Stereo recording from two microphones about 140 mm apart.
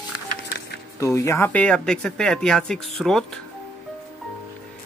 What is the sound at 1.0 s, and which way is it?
Speech, 20° left (ahead or behind).